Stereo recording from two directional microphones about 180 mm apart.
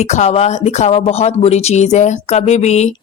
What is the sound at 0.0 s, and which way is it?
Speech, 40° left (ahead or behind).